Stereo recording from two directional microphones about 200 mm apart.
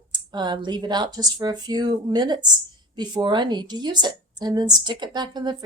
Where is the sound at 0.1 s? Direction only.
20° right (ahead or behind).